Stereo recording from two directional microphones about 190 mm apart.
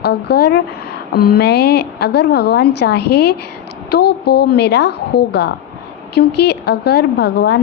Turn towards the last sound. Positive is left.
turn(degrees=60)  # may be behind; listen again after turning